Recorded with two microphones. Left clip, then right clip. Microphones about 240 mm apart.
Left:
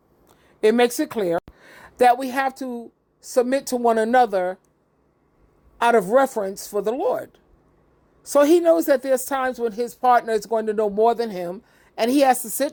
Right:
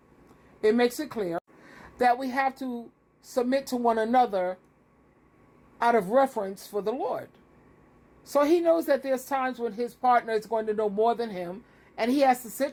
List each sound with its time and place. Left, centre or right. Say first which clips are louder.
0.6 s a woman's voice: left 6 dB; left
5.8 s a woman's voice: left 5 dB; left
8.3 s a woman's voice: left 7 dB; left